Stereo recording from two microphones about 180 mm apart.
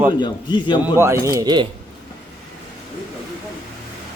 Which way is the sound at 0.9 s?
15° right (ahead or behind).